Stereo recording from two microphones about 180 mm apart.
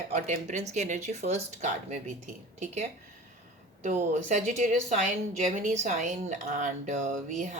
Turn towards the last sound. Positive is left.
turn(degrees=-45)  # may be behind; listen again after turning